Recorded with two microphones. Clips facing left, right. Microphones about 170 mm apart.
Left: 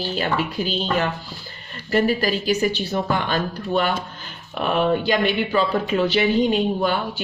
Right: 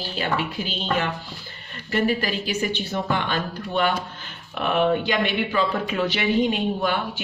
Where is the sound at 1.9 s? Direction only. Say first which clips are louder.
Left 3 dB; 40° left (ahead or behind).